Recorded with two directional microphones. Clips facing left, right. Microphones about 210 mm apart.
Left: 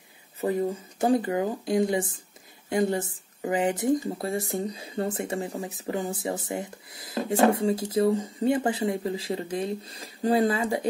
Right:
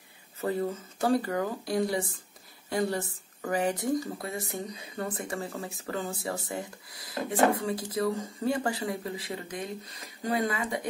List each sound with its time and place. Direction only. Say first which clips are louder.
0.4 s speech: left 4 dB; 15° left (ahead or behind)